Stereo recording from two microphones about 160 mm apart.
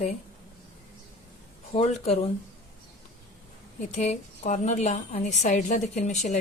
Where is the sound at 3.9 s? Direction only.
45° left (ahead or behind).